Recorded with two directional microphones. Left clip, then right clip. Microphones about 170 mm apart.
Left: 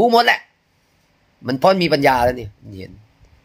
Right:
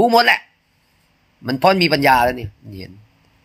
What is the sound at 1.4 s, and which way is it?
Speech, 20° left (ahead or behind).